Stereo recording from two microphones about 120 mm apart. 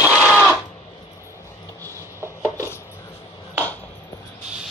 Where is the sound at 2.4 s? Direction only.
20° left (ahead or behind).